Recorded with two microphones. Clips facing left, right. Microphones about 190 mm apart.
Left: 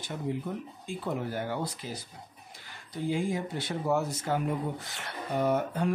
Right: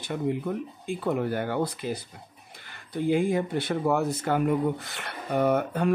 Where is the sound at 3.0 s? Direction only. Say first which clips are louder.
Right 6 dB; 60° right (ahead or behind).